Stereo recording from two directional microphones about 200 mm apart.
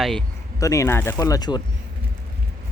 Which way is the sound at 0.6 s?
15° left (ahead or behind).